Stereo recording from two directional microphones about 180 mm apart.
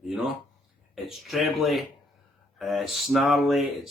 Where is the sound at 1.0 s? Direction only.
Centre (ahead or behind).